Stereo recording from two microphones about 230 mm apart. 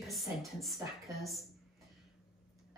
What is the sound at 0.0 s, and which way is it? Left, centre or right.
Speech, centre.